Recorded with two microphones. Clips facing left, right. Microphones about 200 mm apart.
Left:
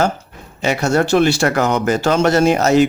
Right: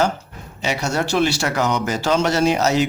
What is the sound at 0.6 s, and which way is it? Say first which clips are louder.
Speech: left 6 dB; 55° left (ahead or behind).